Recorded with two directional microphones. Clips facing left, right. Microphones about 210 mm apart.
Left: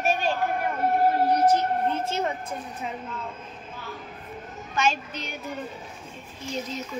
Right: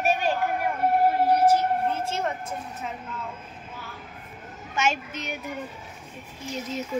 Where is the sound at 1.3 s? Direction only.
10° right (ahead or behind).